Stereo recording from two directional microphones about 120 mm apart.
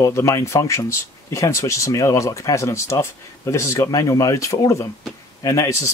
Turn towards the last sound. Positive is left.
turn(degrees=25)  # may be behind; listen again after turning